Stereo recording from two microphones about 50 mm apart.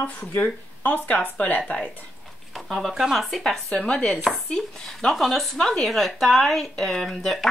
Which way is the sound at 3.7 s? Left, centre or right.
Left.